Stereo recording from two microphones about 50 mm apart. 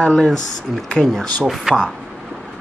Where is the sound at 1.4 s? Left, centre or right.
Centre.